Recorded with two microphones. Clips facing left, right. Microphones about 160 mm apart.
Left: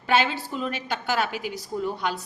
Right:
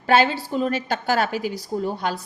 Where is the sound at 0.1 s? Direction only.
40° right (ahead or behind).